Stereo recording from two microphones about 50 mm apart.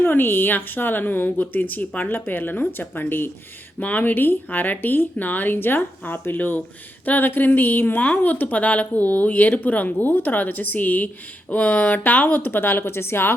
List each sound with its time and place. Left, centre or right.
0.0 s speech: left
3.8 s speech: left
12.8 s speech: left